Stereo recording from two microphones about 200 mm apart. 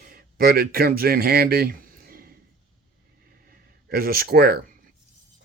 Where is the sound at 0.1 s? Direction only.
45° right (ahead or behind).